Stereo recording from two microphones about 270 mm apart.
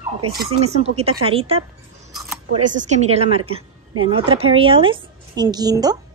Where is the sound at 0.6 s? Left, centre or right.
Right.